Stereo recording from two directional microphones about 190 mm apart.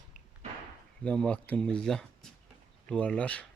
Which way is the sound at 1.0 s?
5° left (ahead or behind).